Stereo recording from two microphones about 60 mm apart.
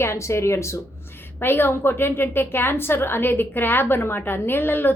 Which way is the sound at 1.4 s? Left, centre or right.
Left.